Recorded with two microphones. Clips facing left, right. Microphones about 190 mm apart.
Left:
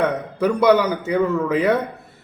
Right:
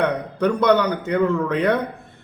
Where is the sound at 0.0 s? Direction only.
5° left (ahead or behind).